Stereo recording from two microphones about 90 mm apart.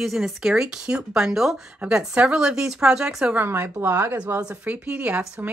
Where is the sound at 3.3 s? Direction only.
25° right (ahead or behind).